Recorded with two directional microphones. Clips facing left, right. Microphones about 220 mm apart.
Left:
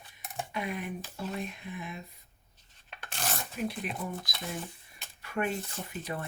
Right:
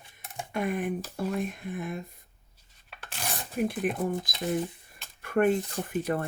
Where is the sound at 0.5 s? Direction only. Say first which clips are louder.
Right 8 dB; 50° right (ahead or behind).